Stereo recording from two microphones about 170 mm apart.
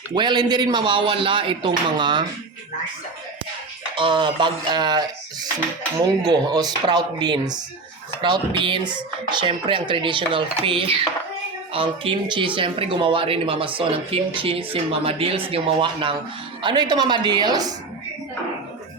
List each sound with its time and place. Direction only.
0.1 s speech: 25° right (ahead or behind)
3.9 s speech: 30° right (ahead or behind)